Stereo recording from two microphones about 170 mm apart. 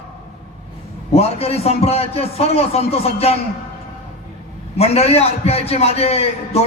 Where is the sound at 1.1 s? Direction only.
35° left (ahead or behind).